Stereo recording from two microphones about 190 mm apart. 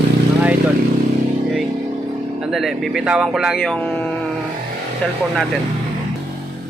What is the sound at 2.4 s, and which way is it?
Speech, centre (ahead or behind).